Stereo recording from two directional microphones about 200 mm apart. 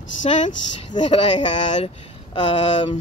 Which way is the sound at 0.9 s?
20° left (ahead or behind).